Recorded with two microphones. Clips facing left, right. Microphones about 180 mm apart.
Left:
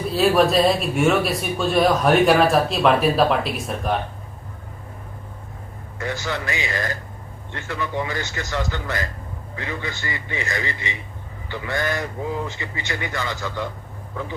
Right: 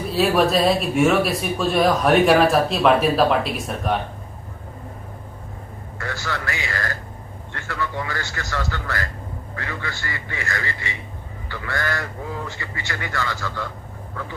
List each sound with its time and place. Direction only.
0.1 s speech: centre (ahead or behind)
6.0 s a man's voice: 20° left (ahead or behind)